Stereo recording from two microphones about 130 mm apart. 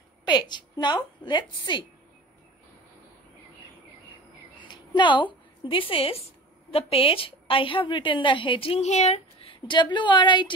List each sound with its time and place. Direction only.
0.3 s a woman's voice: 35° left (ahead or behind)
4.6 s a woman's voice: 35° left (ahead or behind)